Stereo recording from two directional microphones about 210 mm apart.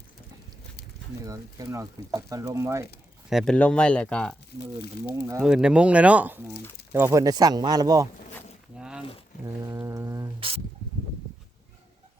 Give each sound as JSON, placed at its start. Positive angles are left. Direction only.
{"t": 1.2, "sound": "speech", "side_deg": -15}
{"t": 3.2, "sound": "speech", "side_deg": 0}
{"t": 5.1, "sound": "speech", "side_deg": -15}
{"t": 5.4, "sound": "speech", "side_deg": -5}
{"t": 8.8, "sound": "a sound", "side_deg": -5}
{"t": 9.6, "sound": "speech", "side_deg": -15}